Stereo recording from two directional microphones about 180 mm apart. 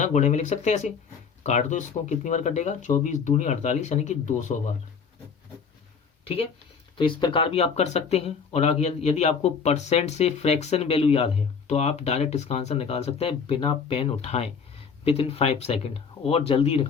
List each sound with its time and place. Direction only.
0.0 s speech: 40° left (ahead or behind)
6.2 s speech: 30° left (ahead or behind)